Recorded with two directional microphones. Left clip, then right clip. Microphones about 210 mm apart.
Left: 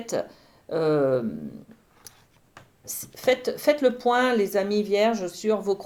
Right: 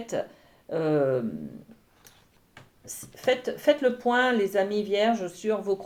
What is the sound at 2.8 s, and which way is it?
Speech, 30° left (ahead or behind).